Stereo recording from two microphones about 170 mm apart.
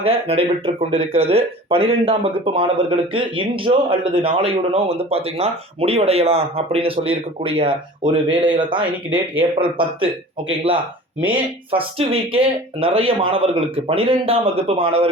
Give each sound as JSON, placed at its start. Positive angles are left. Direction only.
{"t": 0.0, "sound": "speech", "side_deg": -35}
{"t": 11.2, "sound": "speech", "side_deg": -30}